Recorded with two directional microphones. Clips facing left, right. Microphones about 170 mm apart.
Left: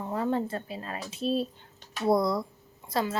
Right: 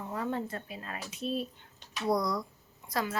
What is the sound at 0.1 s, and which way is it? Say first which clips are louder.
A woman's voice: left 6 dB; 30° left (ahead or behind).